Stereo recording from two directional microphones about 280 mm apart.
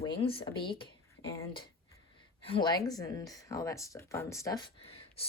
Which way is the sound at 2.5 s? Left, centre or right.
Centre.